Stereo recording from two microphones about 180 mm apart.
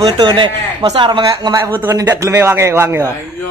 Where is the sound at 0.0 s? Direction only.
25° right (ahead or behind).